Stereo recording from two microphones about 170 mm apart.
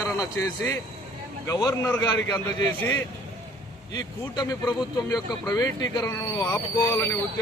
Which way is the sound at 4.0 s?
25° left (ahead or behind).